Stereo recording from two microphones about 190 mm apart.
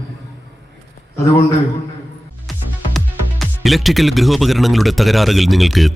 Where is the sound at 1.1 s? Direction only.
15° left (ahead or behind).